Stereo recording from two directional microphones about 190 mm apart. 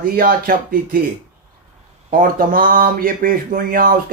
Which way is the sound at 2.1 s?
50° right (ahead or behind).